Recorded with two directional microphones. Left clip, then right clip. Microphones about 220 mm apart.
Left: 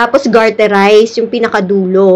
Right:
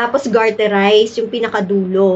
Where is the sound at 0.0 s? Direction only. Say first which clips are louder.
Left 6 dB; 30° left (ahead or behind).